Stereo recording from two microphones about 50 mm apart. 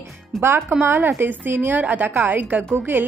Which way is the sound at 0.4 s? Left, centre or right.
Right.